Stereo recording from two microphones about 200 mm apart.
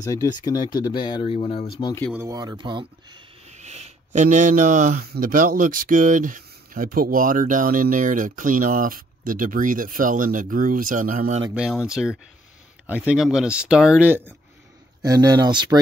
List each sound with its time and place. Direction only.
0.0 s speech: 20° left (ahead or behind)
2.1 s speech: 15° right (ahead or behind); by 11.4 s 40° right (ahead or behind)
11.5 s speech: 5° right (ahead or behind); by 15.8 s 20° right (ahead or behind)